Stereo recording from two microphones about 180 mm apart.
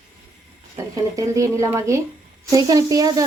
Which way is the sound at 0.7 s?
15° right (ahead or behind).